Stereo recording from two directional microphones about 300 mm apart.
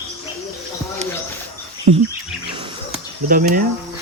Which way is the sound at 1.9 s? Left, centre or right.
Right.